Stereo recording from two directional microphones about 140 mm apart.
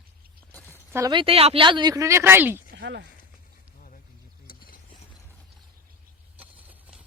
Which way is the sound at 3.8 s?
70° left (ahead or behind).